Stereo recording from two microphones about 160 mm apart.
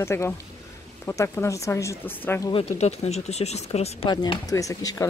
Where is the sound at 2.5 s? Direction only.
40° left (ahead or behind).